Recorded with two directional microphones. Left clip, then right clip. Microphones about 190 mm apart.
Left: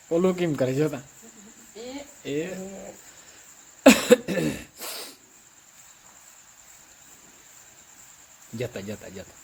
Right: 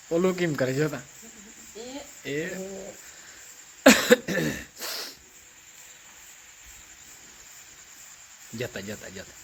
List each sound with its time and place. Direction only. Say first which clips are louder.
0.1 s speech: left 1 dB; centre (ahead or behind)
2.2 s speech: left 1 dB; centre (ahead or behind)
3.8 s cough: left 1 dB; centre (ahead or behind)
8.5 s speech: left 1 dB; centre (ahead or behind)